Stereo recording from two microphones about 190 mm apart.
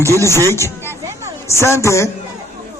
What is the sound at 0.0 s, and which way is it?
Speech, 15° right (ahead or behind).